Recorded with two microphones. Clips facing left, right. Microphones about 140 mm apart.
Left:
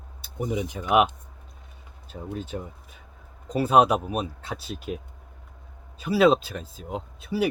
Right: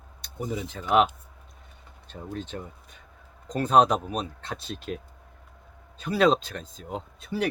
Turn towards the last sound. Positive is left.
turn(degrees=5)  # may be behind; listen again after turning